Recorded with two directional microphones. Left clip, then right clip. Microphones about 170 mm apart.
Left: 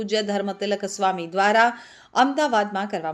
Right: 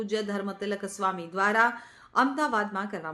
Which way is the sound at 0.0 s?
20° left (ahead or behind).